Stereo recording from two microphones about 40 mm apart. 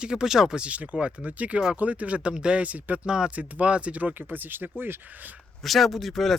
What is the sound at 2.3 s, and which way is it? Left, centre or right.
Speech, right.